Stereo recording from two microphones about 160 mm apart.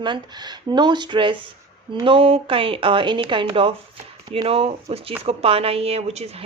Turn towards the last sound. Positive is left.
turn(degrees=-40)  # may be behind; listen again after turning